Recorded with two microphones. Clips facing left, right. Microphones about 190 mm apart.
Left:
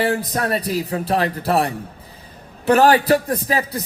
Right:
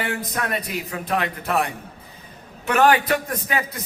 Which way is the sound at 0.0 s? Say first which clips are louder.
Left 6 dB; 35° left (ahead or behind).